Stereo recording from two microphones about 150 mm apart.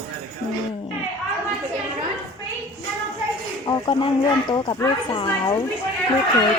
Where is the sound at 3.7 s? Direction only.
30° left (ahead or behind).